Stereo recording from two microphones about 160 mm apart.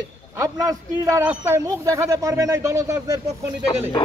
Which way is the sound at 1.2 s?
10° right (ahead or behind).